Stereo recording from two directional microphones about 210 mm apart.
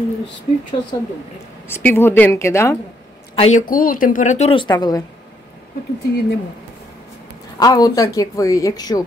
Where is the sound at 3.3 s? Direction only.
30° left (ahead or behind).